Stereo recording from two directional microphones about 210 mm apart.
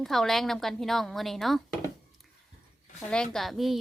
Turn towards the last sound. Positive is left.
turn(degrees=0)  # may be behind; listen again after turning